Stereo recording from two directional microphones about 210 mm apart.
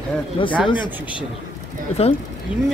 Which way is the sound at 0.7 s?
20° left (ahead or behind).